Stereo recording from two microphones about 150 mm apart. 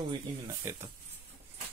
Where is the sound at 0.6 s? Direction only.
20° right (ahead or behind).